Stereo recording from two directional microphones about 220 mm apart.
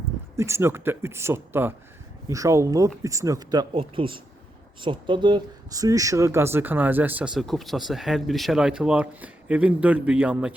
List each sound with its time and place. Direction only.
0.3 s speech: 10° right (ahead or behind)